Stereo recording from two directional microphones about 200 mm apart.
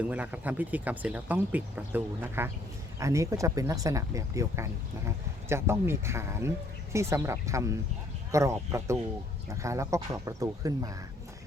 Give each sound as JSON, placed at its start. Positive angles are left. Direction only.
{"t": 0.0, "sound": "speech", "side_deg": -5}